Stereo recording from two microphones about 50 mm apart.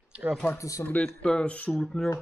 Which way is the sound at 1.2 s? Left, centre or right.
Left.